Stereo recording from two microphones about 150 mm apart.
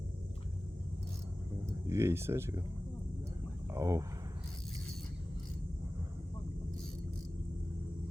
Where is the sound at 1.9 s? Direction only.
15° right (ahead or behind).